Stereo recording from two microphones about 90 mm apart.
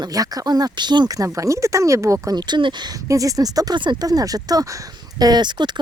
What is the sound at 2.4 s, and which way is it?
Speech, 60° right (ahead or behind).